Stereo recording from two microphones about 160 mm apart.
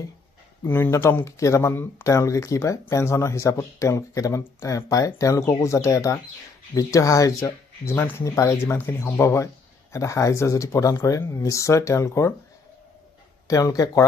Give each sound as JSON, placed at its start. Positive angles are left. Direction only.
{"t": 0.7, "sound": "speech", "side_deg": 15}
{"t": 13.5, "sound": "speech", "side_deg": 25}